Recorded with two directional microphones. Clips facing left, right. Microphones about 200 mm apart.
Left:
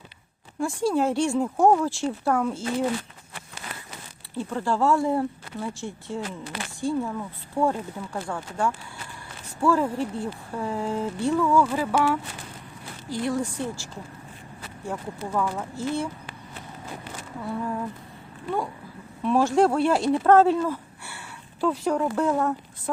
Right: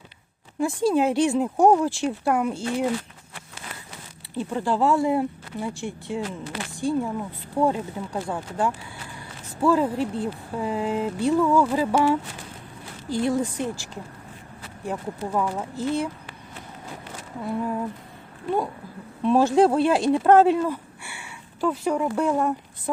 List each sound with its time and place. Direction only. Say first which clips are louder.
0.6 s speech: right 2 dB; 20° right (ahead or behind)
4.4 s speech: right 2 dB; 15° right (ahead or behind)
14.8 s speech: right 3 dB; 15° right (ahead or behind)
17.4 s speech: right 3 dB; 15° right (ahead or behind)
19.2 s speech: right 2 dB; 20° right (ahead or behind)